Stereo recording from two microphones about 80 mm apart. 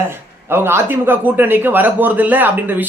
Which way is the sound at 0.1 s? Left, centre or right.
Right.